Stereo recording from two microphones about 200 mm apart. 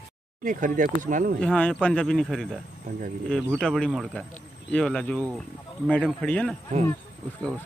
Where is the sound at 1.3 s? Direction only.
5° left (ahead or behind).